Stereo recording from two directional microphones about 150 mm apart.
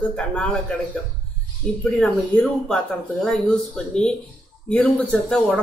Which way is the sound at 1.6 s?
10° left (ahead or behind).